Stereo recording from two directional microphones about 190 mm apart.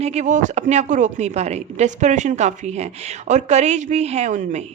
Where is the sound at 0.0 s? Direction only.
35° right (ahead or behind).